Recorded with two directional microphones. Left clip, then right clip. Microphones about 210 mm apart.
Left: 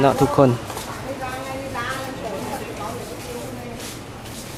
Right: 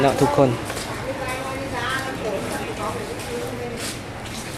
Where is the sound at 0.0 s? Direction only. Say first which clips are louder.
Left 1 dB; 25° left (ahead or behind).